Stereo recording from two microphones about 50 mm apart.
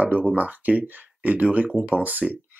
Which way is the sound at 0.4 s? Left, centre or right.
Right.